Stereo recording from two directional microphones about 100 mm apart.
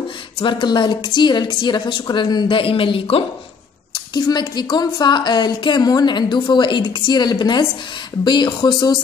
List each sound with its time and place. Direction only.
0.4 s a woman's voice: 55° left (ahead or behind)
4.1 s a woman's voice: 45° left (ahead or behind)